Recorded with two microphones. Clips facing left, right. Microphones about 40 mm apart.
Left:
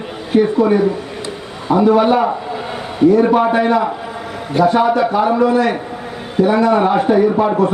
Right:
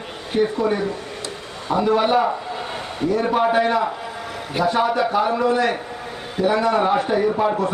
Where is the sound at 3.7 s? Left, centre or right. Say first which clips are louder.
Left 5 dB; centre.